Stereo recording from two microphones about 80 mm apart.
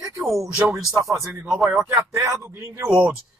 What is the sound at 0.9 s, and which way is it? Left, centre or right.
Speech, right.